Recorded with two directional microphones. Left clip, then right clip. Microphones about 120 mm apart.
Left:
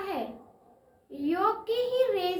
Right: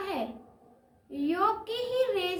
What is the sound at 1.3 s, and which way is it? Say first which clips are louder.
Speech: left 1 dB; 40° right (ahead or behind).